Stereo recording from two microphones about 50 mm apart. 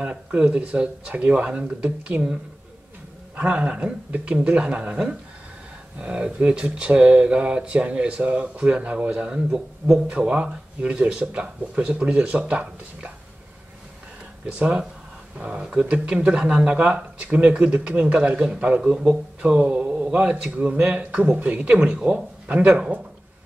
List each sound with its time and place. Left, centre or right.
0.1 s speech: centre
3.3 s speech: right
10.0 s speech: right
15.3 s speech: right